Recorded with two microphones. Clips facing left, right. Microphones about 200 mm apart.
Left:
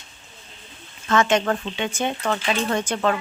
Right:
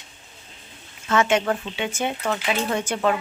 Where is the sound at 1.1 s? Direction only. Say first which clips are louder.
Left 1 dB; 10° right (ahead or behind).